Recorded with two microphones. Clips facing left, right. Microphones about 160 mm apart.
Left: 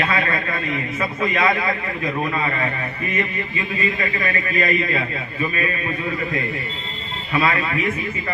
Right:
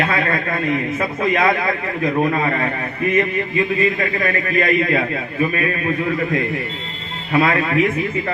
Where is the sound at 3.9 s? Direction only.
55° right (ahead or behind).